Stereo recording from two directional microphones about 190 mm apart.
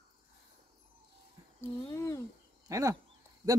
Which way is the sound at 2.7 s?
15° right (ahead or behind).